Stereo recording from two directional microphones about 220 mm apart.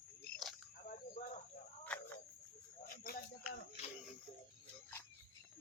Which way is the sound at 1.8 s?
5° left (ahead or behind).